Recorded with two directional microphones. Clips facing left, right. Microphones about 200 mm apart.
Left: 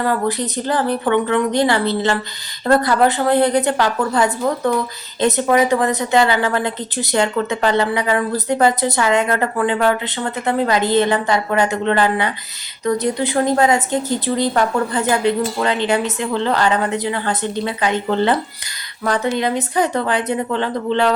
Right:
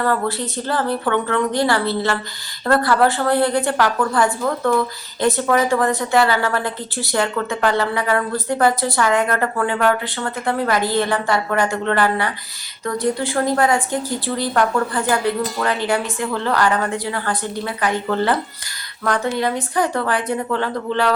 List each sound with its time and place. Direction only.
0.0 s a woman's voice: 15° left (ahead or behind)